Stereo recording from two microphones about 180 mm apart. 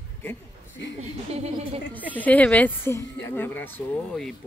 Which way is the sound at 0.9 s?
35° right (ahead or behind).